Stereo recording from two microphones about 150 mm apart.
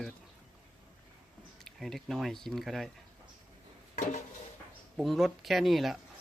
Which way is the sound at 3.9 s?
55° left (ahead or behind).